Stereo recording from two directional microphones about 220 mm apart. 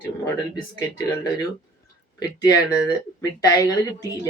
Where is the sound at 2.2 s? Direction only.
15° left (ahead or behind).